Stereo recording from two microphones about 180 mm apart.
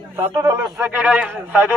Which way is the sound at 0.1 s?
20° right (ahead or behind).